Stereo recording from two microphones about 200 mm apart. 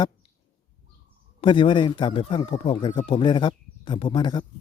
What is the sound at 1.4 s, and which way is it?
Speech, 25° left (ahead or behind).